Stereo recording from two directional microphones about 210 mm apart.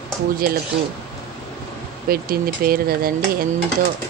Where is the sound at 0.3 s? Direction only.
45° right (ahead or behind).